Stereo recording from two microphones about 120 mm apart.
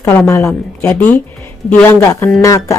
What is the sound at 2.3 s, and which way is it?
Speech, 25° left (ahead or behind).